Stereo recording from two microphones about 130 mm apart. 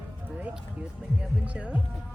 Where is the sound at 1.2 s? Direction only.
10° right (ahead or behind).